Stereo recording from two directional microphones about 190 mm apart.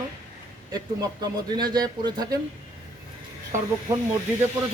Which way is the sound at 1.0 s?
20° right (ahead or behind).